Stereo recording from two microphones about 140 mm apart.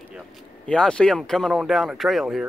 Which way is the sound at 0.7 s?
5° left (ahead or behind).